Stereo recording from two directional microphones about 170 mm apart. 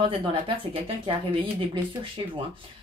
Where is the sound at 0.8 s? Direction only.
30° right (ahead or behind).